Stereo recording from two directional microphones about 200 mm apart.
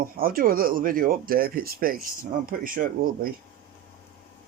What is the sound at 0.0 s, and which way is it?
Speech, 45° right (ahead or behind).